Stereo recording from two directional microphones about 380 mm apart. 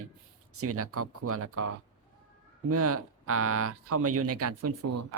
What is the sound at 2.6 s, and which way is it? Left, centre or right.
Speech, right.